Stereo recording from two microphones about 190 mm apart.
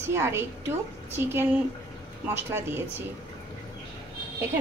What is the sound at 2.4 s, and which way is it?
Speech, 10° right (ahead or behind).